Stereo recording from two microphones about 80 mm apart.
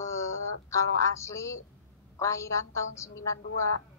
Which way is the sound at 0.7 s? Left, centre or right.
Left.